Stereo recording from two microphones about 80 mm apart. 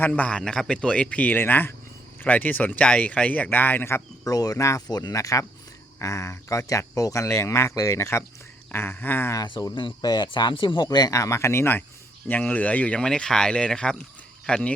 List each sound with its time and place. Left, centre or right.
0.0 s a man's voice: centre
4.3 s speech: left
4.5 s speech: left
4.9 s speech: left
8.7 s speech: left
9.7 s speech: left
10.8 s speech: left
12.3 s a man's voice: centre